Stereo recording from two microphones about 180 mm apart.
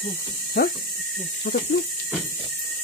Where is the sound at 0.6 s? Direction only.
60° left (ahead or behind).